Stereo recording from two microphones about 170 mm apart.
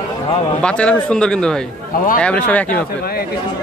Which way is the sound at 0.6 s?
5° left (ahead or behind).